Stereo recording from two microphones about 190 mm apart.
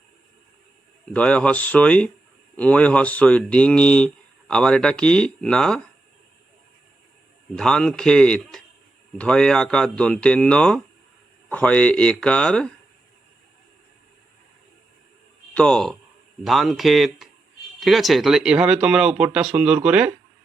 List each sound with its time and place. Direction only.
1.1 s speech: 5° left (ahead or behind)
7.5 s speech: 5° left (ahead or behind)
15.5 s speech: 5° left (ahead or behind)